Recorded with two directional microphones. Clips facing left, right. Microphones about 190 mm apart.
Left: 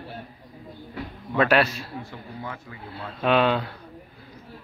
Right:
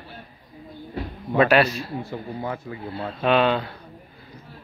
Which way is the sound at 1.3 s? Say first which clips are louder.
Right 3 dB; 10° right (ahead or behind).